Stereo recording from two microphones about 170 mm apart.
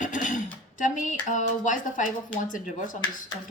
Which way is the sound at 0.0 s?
50° left (ahead or behind).